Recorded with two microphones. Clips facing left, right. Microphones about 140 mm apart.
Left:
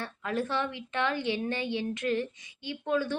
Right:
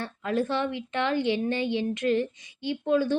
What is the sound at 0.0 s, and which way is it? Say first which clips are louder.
A woman's voice: right 4 dB; 30° right (ahead or behind).